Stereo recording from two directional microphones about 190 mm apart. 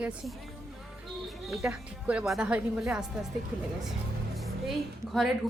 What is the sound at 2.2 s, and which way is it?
Speech, 5° right (ahead or behind).